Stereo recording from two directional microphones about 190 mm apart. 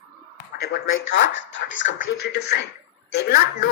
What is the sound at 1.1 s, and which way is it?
Speech, 75° left (ahead or behind).